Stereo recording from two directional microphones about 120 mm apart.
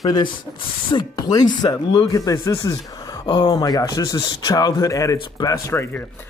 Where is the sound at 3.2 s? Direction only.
40° left (ahead or behind).